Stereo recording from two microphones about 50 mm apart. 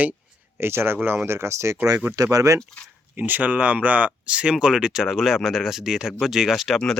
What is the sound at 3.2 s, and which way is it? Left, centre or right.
Speech, right.